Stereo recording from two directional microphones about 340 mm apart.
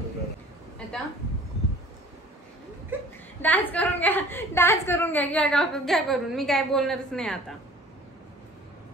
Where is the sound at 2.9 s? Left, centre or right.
Centre.